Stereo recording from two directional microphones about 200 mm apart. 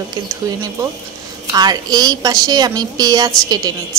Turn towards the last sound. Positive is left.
turn(degrees=-20)  # may be behind; listen again after turning